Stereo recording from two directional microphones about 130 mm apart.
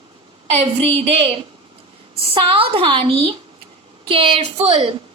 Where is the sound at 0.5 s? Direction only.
55° right (ahead or behind).